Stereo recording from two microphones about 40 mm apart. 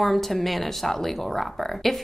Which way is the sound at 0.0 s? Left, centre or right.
Centre.